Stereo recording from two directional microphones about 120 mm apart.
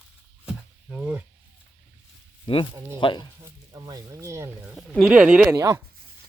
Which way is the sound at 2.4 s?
45° left (ahead or behind).